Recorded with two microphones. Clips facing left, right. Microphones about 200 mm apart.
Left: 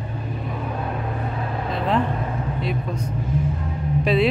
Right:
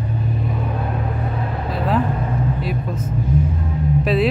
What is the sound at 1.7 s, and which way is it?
Vehicle, 5° right (ahead or behind).